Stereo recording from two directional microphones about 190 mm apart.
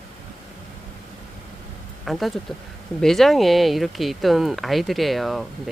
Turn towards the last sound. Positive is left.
turn(degrees=0)  # may be behind; listen again after turning